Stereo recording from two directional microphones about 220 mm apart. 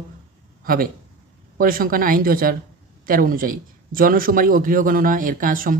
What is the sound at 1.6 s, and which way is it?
A man's voice, 40° right (ahead or behind).